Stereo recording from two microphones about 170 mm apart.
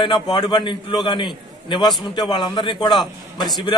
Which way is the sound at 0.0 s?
25° left (ahead or behind).